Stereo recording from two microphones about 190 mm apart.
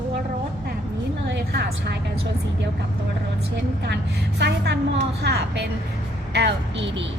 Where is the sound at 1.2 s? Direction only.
65° right (ahead or behind).